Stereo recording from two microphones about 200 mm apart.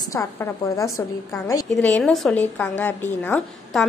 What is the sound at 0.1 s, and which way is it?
A woman's voice, 15° left (ahead or behind).